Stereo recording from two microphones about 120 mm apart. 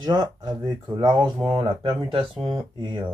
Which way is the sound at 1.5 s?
30° right (ahead or behind).